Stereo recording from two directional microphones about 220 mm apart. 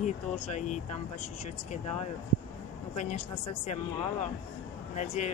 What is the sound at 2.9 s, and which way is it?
Speech, 30° left (ahead or behind).